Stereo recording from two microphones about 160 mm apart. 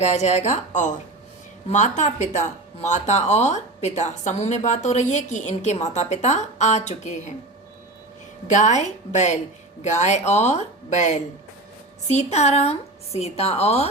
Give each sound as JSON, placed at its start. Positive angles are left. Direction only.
{"t": 0.0, "sound": "speech", "side_deg": 45}
{"t": 8.4, "sound": "a woman's voice", "side_deg": 50}